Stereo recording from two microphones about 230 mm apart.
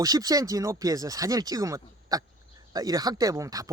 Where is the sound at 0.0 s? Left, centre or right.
Centre.